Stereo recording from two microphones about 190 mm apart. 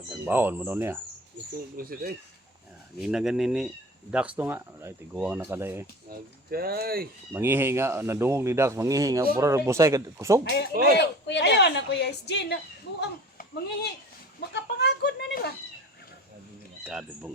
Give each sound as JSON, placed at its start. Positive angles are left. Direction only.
{"t": 0.1, "sound": "speech", "side_deg": -10}
{"t": 1.7, "sound": "speech", "side_deg": -50}
{"t": 3.0, "sound": "speech", "side_deg": -5}
{"t": 6.1, "sound": "speech", "side_deg": -50}
{"t": 7.3, "sound": "speech", "side_deg": -10}
{"t": 10.9, "sound": "a woman's voice", "side_deg": 65}
{"t": 16.8, "sound": "speech", "side_deg": -5}